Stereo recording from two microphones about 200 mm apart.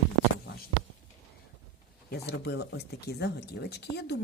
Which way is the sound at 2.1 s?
55° left (ahead or behind).